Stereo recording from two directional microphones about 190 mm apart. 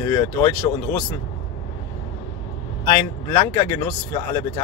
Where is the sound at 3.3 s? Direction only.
25° left (ahead or behind).